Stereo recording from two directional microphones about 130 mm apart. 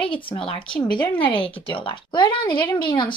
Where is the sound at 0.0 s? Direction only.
40° left (ahead or behind).